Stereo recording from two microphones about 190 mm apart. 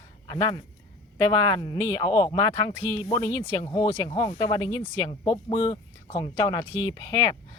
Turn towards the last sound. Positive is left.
turn(degrees=20)  # may be behind; listen again after turning